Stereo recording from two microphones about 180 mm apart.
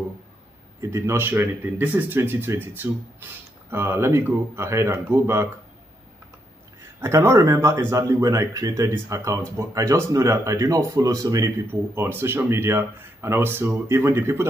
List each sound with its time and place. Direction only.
0.7 s speech: 15° right (ahead or behind)
7.0 s speech: 15° right (ahead or behind)